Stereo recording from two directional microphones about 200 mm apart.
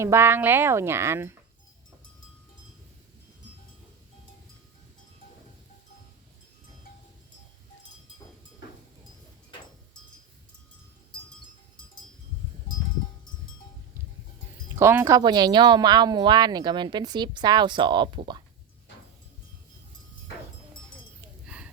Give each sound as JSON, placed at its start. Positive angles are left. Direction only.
{"t": 0.0, "sound": "speech", "side_deg": -10}
{"t": 14.8, "sound": "speech", "side_deg": -15}
{"t": 21.4, "sound": "a sound", "side_deg": -5}